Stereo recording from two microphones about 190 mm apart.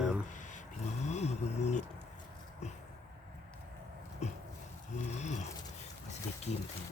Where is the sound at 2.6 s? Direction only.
35° left (ahead or behind).